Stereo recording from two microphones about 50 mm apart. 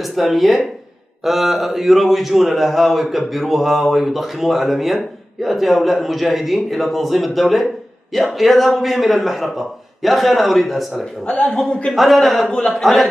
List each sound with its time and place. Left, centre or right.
0.0 s speech: centre
11.2 s a man's voice: left
11.9 s speech: centre
12.4 s a man's voice: centre
12.8 s speech: centre